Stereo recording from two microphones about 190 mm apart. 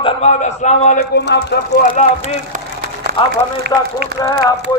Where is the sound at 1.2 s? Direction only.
60° left (ahead or behind).